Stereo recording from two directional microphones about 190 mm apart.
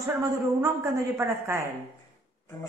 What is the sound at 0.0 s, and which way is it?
A woman's voice, 15° right (ahead or behind).